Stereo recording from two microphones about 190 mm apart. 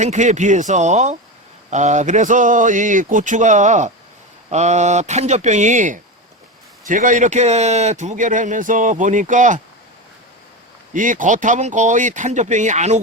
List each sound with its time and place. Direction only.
0.0 s speech: 40° right (ahead or behind)
10.9 s speech: 45° right (ahead or behind)